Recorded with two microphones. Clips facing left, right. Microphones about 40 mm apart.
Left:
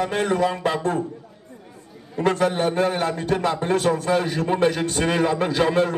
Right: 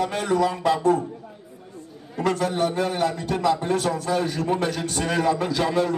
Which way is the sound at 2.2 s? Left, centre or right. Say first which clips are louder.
Left 2 dB; left.